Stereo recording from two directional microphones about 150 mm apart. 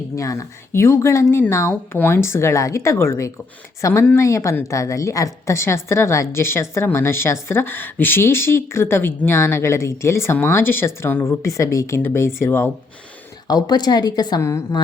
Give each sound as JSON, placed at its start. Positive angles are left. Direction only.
{"t": 0.2, "sound": "speech", "side_deg": 20}
{"t": 13.5, "sound": "speech", "side_deg": 25}